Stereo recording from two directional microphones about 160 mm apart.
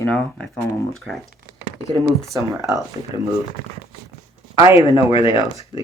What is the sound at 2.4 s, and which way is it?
Speech, 20° right (ahead or behind).